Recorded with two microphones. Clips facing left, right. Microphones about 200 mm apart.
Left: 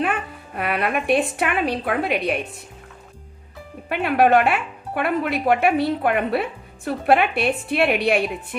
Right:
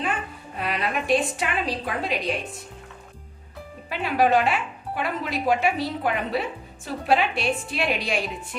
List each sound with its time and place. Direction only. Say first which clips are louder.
0.0 s speech: left 5 dB; 60° left (ahead or behind)
3.8 s speech: left 4 dB; 60° left (ahead or behind)